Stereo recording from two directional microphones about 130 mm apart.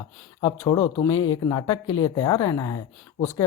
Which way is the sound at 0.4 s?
30° left (ahead or behind).